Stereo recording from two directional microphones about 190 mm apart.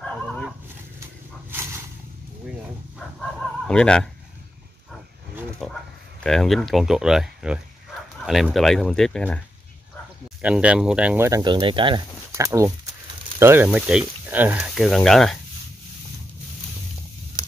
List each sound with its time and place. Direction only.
0.0 s dog: 5° left (ahead or behind)
1.5 s a sound: 15° right (ahead or behind)
3.2 s chicken: 5° left (ahead or behind)
5.6 s speech: centre (ahead or behind)
10.4 s speech: 5° right (ahead or behind)